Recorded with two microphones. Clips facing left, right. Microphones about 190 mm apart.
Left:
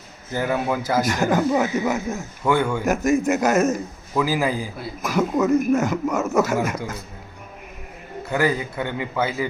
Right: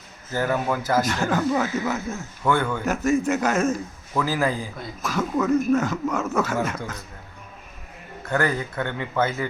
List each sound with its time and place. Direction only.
0.3 s a man's voice: 15° left (ahead or behind)
8.2 s a man's voice: 10° left (ahead or behind)